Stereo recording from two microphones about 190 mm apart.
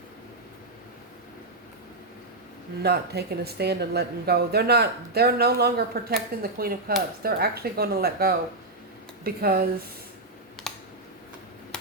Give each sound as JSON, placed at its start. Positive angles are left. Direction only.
{"t": 2.8, "sound": "speech", "side_deg": -60}